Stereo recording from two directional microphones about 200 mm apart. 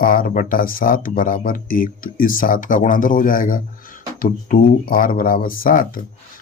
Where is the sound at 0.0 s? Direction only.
45° left (ahead or behind).